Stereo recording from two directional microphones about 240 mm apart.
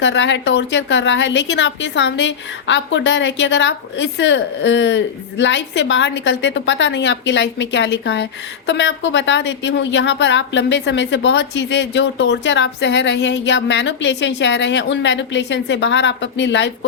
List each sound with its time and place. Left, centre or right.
0.0 s a woman's voice: left